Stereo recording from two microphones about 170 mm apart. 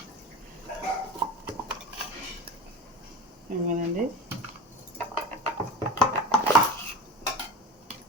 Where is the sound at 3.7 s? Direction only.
50° right (ahead or behind).